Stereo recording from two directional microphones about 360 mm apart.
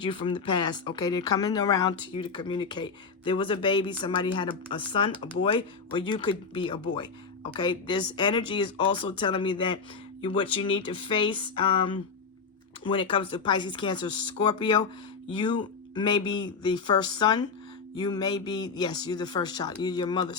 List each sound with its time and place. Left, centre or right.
0.2 s speech: centre
0.4 s speech: left
0.9 s speech: centre
16.0 s speech: centre